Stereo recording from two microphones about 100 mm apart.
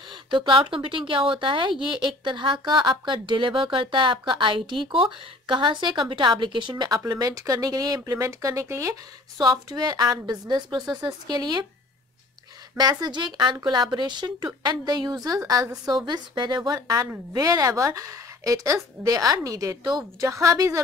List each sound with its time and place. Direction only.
0.1 s a woman's voice: 55° right (ahead or behind)
7.2 s a woman's voice: 35° right (ahead or behind)
9.4 s a woman's voice: 45° right (ahead or behind)
12.7 s a woman's voice: 45° right (ahead or behind)